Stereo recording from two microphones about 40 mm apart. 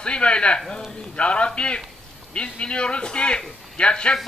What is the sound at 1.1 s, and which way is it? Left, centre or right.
A man's voice, left.